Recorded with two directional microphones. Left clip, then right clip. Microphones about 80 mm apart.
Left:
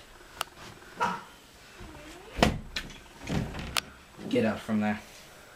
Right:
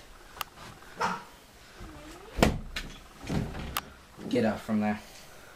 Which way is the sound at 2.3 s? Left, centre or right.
Centre.